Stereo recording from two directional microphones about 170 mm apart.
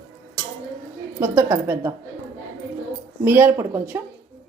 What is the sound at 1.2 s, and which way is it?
Speech, 15° right (ahead or behind).